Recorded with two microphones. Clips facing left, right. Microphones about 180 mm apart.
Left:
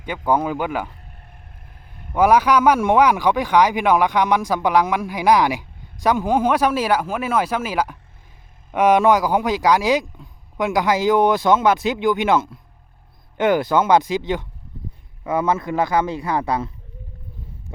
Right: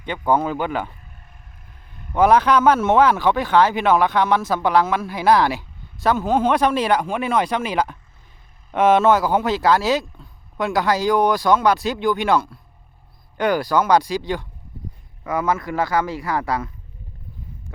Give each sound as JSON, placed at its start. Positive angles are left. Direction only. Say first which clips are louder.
{"t": 0.0, "sound": "speech", "louder": "even", "side_deg": 10}
{"t": 2.1, "sound": "speech", "louder": "even", "side_deg": 10}